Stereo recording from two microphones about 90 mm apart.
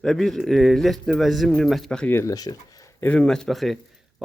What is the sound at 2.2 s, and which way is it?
Speech, 45° left (ahead or behind).